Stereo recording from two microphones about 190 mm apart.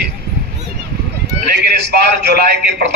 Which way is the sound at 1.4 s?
60° right (ahead or behind).